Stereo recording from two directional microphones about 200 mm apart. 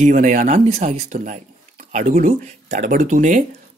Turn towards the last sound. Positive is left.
turn(degrees=-40)  # may be behind; listen again after turning